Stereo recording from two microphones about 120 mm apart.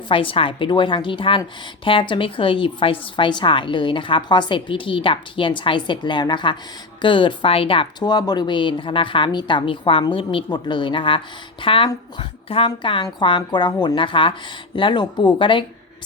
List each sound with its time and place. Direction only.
0.1 s a woman's voice: 45° left (ahead or behind)